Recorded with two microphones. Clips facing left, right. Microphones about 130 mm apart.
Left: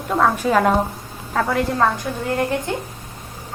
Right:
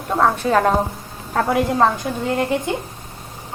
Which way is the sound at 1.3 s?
15° right (ahead or behind).